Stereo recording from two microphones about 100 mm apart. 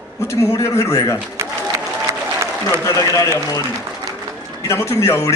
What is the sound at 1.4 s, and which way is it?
Applause, 30° right (ahead or behind).